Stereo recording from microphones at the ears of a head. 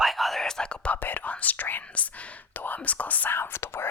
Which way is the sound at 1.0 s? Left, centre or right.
Left.